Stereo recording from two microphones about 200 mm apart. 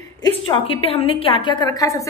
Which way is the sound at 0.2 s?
25° left (ahead or behind).